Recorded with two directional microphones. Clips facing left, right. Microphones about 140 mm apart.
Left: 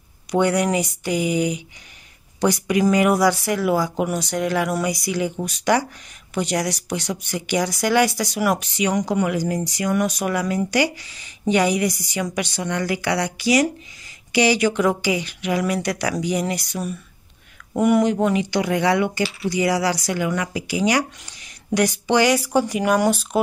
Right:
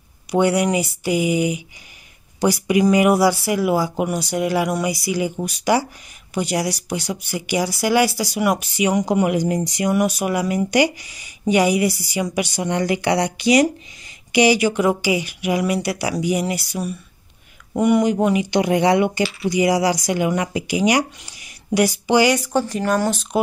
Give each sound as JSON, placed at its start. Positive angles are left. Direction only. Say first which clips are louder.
{"t": 0.3, "sound": "speech", "louder": "right 1 dB", "side_deg": -10}
{"t": 9.0, "sound": "speech", "louder": "right 3 dB", "side_deg": -20}
{"t": 9.9, "sound": "speech", "louder": "right 1 dB", "side_deg": -5}
{"t": 18.5, "sound": "speech", "louder": "right 3 dB", "side_deg": -20}
{"t": 22.4, "sound": "speech", "louder": "left 1 dB", "side_deg": 10}